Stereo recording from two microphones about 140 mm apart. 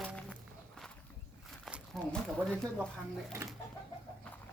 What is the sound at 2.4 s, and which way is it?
Speech, 5° left (ahead or behind).